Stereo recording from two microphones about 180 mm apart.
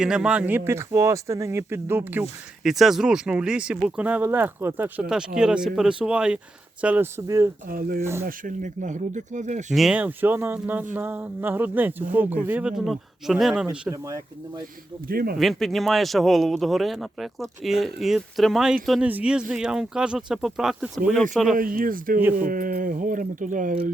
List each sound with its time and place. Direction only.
0.0 s a man's voice: 5° right (ahead or behind)
7.7 s speech: 55° right (ahead or behind)
9.7 s speech: 5° right (ahead or behind)
13.9 s speech: 20° right (ahead or behind)
15.0 s speech: 55° right (ahead or behind)
15.4 s a man's voice: centre (ahead or behind)
21.5 s speech: 50° right (ahead or behind)